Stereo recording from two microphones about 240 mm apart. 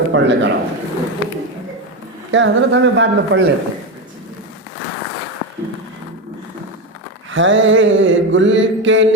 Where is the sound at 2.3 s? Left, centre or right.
Right.